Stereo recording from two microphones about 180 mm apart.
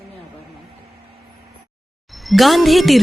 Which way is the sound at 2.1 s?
Centre (ahead or behind).